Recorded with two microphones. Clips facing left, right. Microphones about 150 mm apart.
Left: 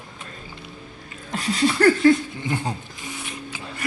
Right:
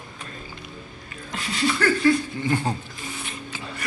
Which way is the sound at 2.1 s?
15° left (ahead or behind).